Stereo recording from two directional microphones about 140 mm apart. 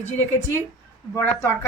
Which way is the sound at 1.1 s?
15° left (ahead or behind).